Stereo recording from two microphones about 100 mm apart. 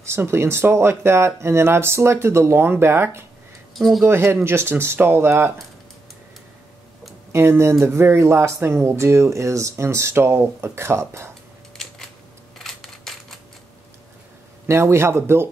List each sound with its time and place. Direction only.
0.0 s speech: 25° right (ahead or behind)
3.7 s speech: centre (ahead or behind)
4.0 s speech: 25° right (ahead or behind)
7.3 s speech: 25° right (ahead or behind)
11.7 s a sound: 5° left (ahead or behind)
14.7 s speech: 25° right (ahead or behind)